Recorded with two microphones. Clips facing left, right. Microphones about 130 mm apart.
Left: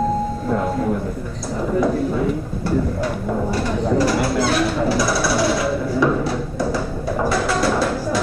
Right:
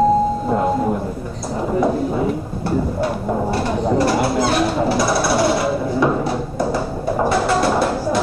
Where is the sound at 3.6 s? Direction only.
30° right (ahead or behind).